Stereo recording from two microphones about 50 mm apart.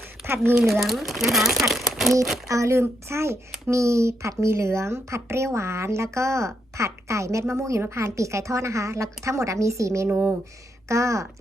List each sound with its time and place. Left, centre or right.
0.2 s speech: right
0.7 s speech: centre
1.7 s a sound: centre
2.5 s speech: right
3.7 s speech: right
7.8 s a woman's voice: right
10.1 s speech: right
10.8 s a woman's voice: right